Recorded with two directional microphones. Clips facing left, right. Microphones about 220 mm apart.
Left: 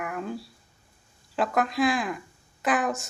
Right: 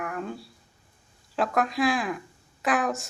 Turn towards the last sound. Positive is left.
turn(degrees=0)  # may be behind; listen again after turning